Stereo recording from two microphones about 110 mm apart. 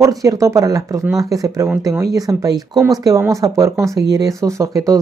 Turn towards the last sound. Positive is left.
turn(degrees=-30)  # may be behind; listen again after turning